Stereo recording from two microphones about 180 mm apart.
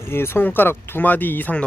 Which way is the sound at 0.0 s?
15° left (ahead or behind).